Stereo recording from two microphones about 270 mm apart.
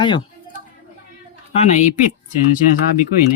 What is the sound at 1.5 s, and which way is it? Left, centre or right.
Speech, left.